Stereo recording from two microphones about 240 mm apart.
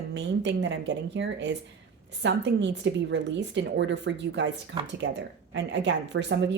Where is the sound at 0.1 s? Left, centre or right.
Right.